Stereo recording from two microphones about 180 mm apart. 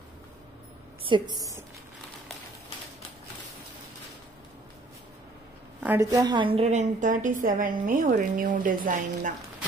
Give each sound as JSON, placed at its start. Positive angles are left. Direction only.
{"t": 1.0, "sound": "a woman's voice", "side_deg": -25}
{"t": 5.8, "sound": "a woman's voice", "side_deg": -15}